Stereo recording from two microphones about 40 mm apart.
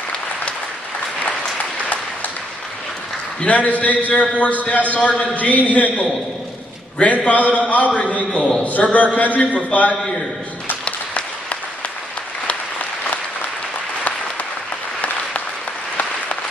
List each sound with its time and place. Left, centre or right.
3.3 s a man's voice: left
8.3 s a man's voice: left
8.6 s a man's voice: left
10.9 s applause: left